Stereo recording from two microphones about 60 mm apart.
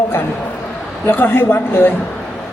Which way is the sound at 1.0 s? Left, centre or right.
Left.